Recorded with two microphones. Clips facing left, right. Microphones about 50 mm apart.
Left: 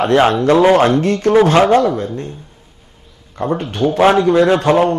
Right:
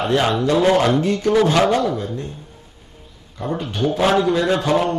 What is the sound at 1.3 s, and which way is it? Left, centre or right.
A man's voice, left.